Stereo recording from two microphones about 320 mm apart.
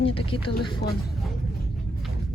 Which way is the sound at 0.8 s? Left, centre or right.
Left.